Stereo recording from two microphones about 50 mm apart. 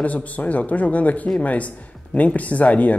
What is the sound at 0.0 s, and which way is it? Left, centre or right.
Speech, left.